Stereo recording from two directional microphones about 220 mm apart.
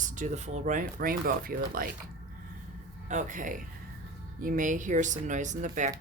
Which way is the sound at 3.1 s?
35° right (ahead or behind).